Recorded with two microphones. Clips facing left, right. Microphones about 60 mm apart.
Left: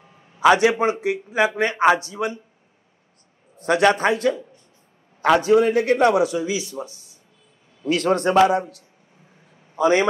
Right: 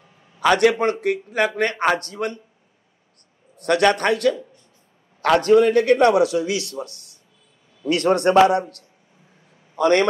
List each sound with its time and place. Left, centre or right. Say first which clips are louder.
0.4 s a man's voice: left 1 dB; centre
3.6 s a man's voice: even; centre
6.9 s speech: right 1 dB; right
7.8 s a man's voice: right 2 dB; centre
9.8 s a man's voice: right 1 dB; centre